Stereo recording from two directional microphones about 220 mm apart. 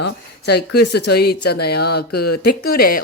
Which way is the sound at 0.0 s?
50° left (ahead or behind).